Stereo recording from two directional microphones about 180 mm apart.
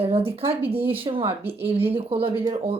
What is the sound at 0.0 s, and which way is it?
Speech, 30° right (ahead or behind).